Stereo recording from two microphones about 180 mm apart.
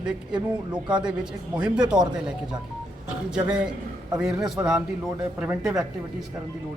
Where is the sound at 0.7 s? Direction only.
5° right (ahead or behind).